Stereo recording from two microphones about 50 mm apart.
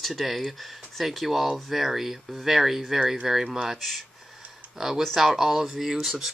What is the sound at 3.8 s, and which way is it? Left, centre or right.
Speech, centre.